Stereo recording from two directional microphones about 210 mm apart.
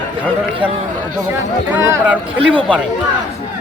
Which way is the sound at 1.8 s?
15° right (ahead or behind).